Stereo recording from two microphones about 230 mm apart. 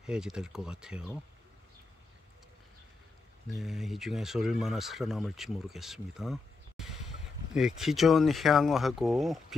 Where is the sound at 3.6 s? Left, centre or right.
Centre.